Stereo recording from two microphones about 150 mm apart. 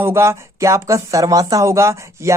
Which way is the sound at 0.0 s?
15° right (ahead or behind).